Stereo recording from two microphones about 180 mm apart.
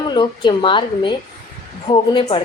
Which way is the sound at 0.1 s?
25° left (ahead or behind).